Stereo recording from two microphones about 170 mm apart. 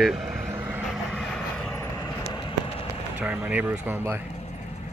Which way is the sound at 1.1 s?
Centre (ahead or behind).